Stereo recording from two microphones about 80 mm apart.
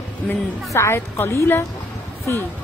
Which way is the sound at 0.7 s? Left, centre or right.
Left.